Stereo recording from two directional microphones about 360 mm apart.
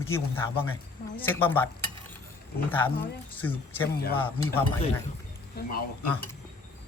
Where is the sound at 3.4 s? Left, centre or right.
Centre.